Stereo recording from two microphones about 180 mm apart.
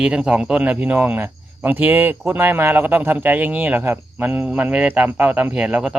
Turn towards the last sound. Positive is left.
turn(degrees=-5)  # may be behind; listen again after turning